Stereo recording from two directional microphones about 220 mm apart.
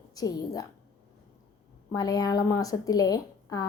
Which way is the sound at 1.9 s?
15° left (ahead or behind).